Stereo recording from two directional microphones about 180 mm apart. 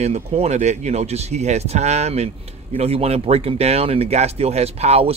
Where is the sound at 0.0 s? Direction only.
35° right (ahead or behind).